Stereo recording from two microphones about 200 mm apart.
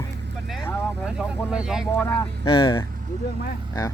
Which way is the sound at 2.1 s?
25° left (ahead or behind).